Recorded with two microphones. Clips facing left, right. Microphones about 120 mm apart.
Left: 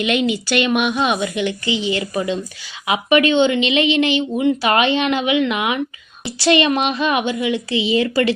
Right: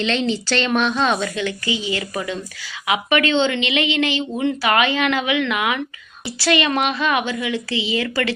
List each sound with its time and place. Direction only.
0.0 s a woman's voice: 15° left (ahead or behind)